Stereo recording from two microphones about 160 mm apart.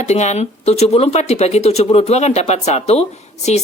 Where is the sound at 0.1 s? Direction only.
45° left (ahead or behind).